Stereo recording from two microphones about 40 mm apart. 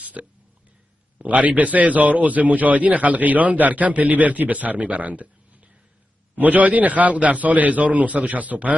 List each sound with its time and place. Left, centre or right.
0.0 s hiccup: right
1.1 s a man's voice: right
6.3 s a man's voice: right